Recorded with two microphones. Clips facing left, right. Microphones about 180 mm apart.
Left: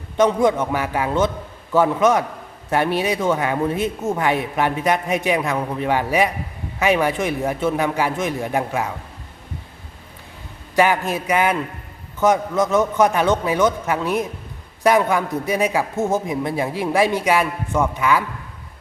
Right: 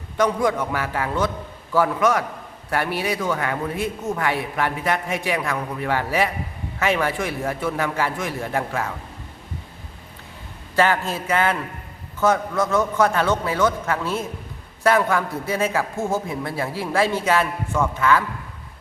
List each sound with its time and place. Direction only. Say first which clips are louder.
0.2 s a man's voice: left 4 dB; 25° left (ahead or behind)
10.8 s a man's voice: left 2 dB; 15° left (ahead or behind)